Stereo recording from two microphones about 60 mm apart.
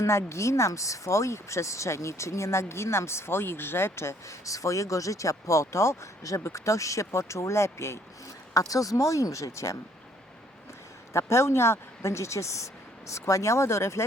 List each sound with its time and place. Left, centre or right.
0.0 s speech: left
4.4 s speech: left
8.5 s speech: left
11.1 s speech: left